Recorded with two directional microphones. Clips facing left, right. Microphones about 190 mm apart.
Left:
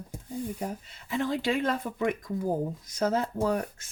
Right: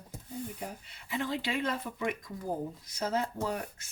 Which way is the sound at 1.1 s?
50° left (ahead or behind).